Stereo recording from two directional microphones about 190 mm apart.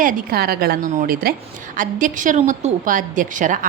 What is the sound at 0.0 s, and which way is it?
A woman's voice, 50° right (ahead or behind).